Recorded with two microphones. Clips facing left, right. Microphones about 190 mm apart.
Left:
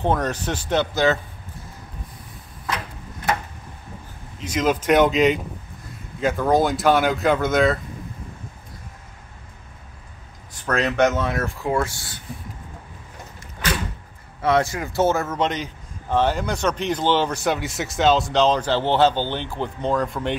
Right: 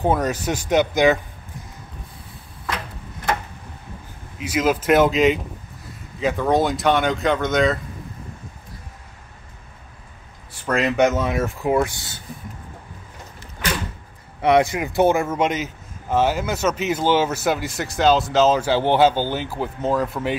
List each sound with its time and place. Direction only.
0.0 s speech: 10° right (ahead or behind)
4.4 s speech: 5° right (ahead or behind)
10.7 s speech: 10° right (ahead or behind)
14.4 s speech: 15° right (ahead or behind)